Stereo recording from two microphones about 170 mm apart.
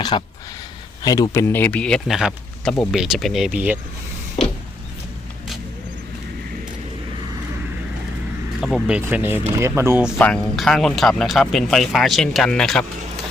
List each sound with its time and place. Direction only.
0.1 s speech: 30° left (ahead or behind); by 3.8 s 5° right (ahead or behind)
8.6 s speech: 5° right (ahead or behind)
10.2 s speech: 5° left (ahead or behind)